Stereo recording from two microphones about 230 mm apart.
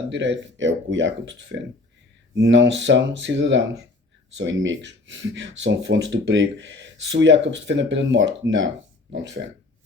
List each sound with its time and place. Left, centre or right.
0.1 s speech: right